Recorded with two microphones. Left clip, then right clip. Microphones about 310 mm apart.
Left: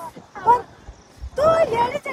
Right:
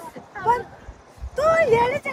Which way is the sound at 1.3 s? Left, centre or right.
Centre.